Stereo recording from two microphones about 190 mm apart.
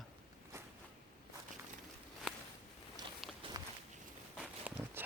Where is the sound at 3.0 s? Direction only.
20° right (ahead or behind).